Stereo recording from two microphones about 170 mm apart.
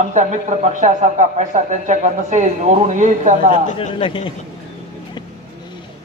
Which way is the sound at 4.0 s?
30° left (ahead or behind).